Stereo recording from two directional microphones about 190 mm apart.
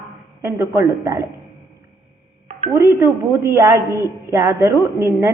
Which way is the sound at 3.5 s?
15° right (ahead or behind).